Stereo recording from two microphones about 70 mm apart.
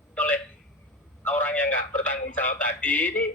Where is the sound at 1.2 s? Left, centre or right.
Left.